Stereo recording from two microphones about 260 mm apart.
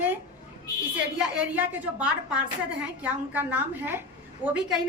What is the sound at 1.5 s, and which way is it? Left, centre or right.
A woman's voice, centre.